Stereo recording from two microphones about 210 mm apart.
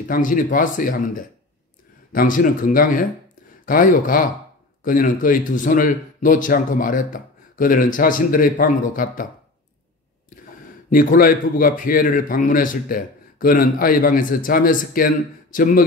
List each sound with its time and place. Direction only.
0.1 s speech: 40° left (ahead or behind)
10.9 s speech: 40° left (ahead or behind)